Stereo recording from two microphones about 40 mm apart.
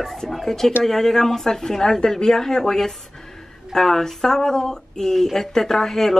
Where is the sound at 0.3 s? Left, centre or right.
Centre.